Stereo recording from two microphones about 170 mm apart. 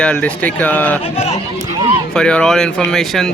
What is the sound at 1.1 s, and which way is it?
Speech, 40° left (ahead or behind).